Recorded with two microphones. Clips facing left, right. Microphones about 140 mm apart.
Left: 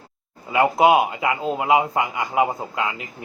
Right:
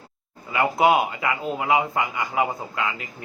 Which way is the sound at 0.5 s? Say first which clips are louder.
Left 3 dB; 20° left (ahead or behind).